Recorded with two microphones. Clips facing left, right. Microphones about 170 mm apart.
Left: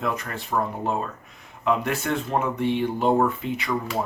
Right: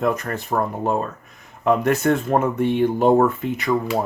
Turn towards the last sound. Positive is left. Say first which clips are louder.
# right 5 dB
turn(degrees=-45)  # may be behind; listen again after turning